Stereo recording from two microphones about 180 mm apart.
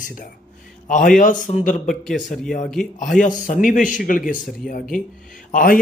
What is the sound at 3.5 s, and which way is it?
Speech, 45° left (ahead or behind).